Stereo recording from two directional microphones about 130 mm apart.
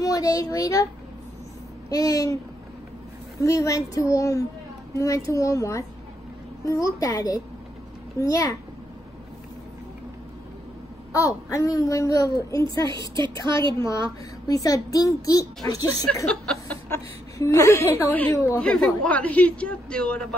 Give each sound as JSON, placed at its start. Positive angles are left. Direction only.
{"t": 0.0, "sound": "speech", "side_deg": 25}
{"t": 1.9, "sound": "a child's voice", "side_deg": 25}
{"t": 3.3, "sound": "a child's voice", "side_deg": 25}
{"t": 11.1, "sound": "a child's voice", "side_deg": 25}
{"t": 13.5, "sound": "a woman's voice", "side_deg": -40}
{"t": 14.5, "sound": "a child's voice", "side_deg": 25}
{"t": 18.6, "sound": "speech", "side_deg": 5}